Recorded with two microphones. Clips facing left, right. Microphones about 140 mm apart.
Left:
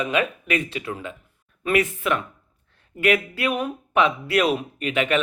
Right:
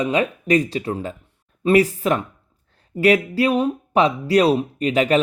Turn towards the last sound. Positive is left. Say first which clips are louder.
# right 5 dB
turn(degrees=-35)  # may be behind; listen again after turning